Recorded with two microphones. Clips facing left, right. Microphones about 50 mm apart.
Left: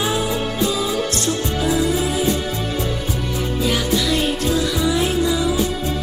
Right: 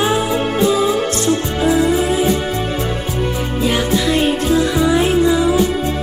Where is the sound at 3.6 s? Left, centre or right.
Right.